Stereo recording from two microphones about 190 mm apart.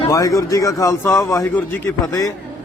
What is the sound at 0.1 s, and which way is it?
Speech, 15° left (ahead or behind).